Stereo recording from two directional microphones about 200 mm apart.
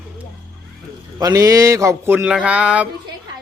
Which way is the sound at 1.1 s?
15° right (ahead or behind).